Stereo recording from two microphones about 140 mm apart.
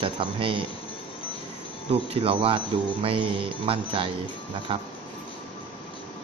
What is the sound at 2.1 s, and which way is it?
Speech, 40° right (ahead or behind).